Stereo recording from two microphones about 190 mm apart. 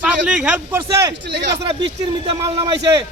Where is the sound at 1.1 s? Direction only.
65° right (ahead or behind).